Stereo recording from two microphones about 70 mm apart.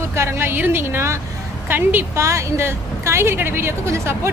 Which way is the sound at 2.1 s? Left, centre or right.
Right.